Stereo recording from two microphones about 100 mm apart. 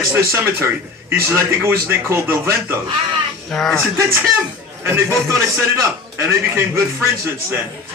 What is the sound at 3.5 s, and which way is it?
Speech, 5° left (ahead or behind).